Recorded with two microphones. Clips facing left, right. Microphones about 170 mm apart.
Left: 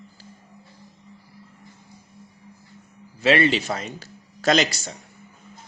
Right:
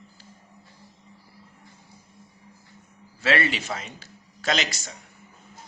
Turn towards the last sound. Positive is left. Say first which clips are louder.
# left 7 dB
turn(degrees=35)  # may be behind; listen again after turning